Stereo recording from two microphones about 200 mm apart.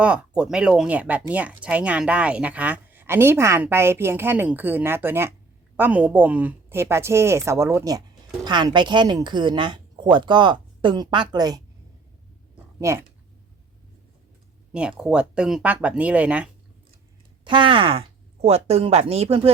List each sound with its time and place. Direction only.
0.0 s speech: 5° right (ahead or behind)
12.8 s speech: 15° right (ahead or behind)
14.7 s speech: 5° right (ahead or behind)
17.4 s speech: 25° right (ahead or behind)